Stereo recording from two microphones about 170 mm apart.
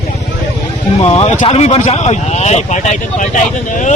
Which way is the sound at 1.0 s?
40° left (ahead or behind).